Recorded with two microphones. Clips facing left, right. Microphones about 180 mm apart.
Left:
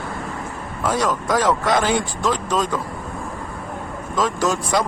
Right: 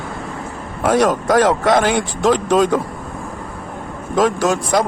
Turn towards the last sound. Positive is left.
turn(degrees=-60)  # may be behind; listen again after turning